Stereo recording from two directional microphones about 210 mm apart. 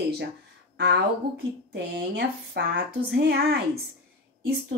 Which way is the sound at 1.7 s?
55° right (ahead or behind).